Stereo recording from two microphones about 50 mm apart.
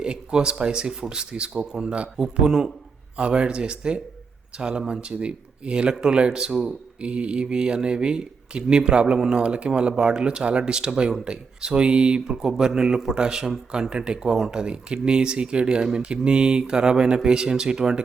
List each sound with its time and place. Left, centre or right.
0.0 s speech: centre
3.2 s speech: right